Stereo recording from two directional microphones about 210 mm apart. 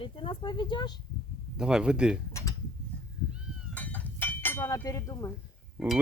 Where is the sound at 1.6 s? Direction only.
5° right (ahead or behind).